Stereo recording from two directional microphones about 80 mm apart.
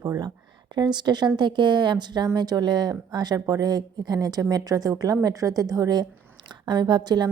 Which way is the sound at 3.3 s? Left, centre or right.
Right.